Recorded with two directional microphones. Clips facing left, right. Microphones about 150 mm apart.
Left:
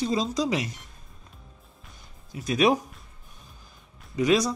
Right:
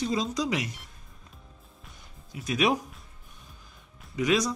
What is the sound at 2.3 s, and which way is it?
Speech, 35° left (ahead or behind).